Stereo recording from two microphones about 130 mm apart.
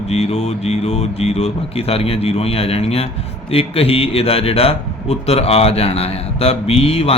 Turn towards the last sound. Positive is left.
turn(degrees=50)  # may be behind; listen again after turning